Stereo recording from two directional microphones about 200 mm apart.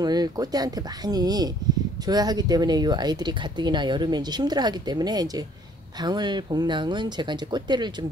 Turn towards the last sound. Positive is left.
turn(degrees=-20)  # may be behind; listen again after turning